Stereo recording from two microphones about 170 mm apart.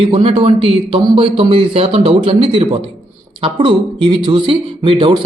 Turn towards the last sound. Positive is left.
turn(degrees=-30)  # may be behind; listen again after turning